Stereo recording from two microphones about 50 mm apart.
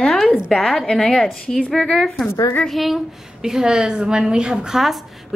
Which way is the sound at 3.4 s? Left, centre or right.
Centre.